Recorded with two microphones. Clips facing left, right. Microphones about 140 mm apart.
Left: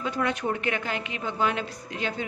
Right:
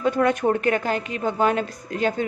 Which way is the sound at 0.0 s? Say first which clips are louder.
Right 8 dB; 50° right (ahead or behind).